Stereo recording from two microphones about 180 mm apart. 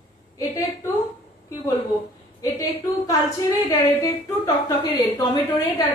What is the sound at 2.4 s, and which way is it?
A woman's voice, 20° left (ahead or behind).